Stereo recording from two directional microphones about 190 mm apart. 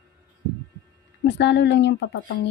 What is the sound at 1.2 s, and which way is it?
Speech, 65° left (ahead or behind).